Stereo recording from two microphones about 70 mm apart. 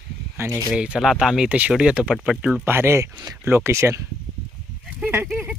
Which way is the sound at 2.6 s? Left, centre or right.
Right.